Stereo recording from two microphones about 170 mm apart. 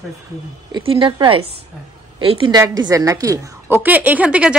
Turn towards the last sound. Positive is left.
turn(degrees=-5)  # may be behind; listen again after turning